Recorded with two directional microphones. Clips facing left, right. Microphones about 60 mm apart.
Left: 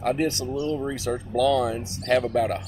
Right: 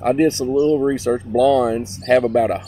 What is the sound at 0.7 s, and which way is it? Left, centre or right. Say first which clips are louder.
Speech: right 10 dB; right.